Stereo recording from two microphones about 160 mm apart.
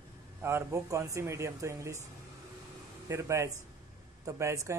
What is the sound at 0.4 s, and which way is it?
A man's voice, 15° right (ahead or behind).